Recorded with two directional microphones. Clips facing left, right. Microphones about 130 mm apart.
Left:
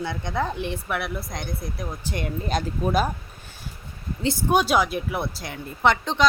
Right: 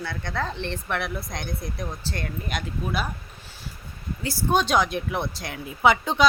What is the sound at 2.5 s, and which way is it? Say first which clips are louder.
Speech: left 7 dB; 40° left (ahead or behind).